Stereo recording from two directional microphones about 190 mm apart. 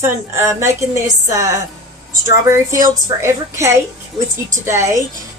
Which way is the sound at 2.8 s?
15° right (ahead or behind).